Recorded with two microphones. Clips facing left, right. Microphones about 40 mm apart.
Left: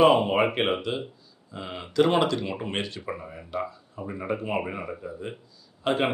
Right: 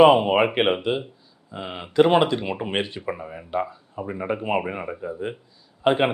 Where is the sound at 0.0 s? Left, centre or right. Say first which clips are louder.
Right 4 dB; right.